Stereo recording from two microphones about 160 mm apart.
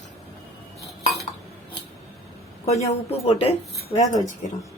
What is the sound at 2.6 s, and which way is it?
Speech, 40° left (ahead or behind).